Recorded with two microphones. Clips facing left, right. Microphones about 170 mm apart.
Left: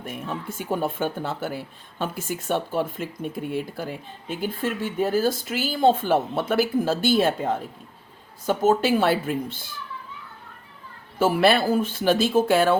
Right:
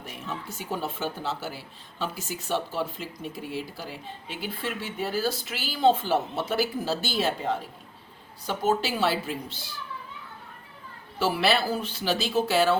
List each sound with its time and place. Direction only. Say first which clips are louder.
0.0 s speech: left 5 dB; 50° left (ahead or behind)
11.2 s speech: left 5 dB; 50° left (ahead or behind)